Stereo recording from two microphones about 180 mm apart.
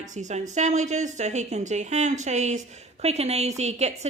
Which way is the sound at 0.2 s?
40° right (ahead or behind).